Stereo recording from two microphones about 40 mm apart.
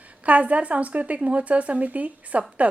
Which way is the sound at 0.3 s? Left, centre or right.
Right.